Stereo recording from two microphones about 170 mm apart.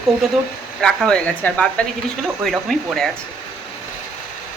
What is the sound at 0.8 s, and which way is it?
Speech, 5° left (ahead or behind).